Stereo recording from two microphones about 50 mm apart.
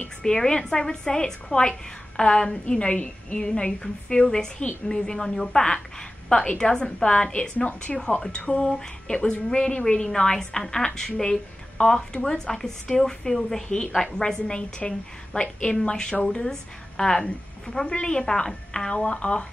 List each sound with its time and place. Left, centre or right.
0.2 s a woman's voice: centre
7.5 s a woman's voice: left